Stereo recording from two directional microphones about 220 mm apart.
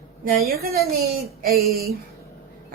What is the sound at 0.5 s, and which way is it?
Speech, 45° right (ahead or behind).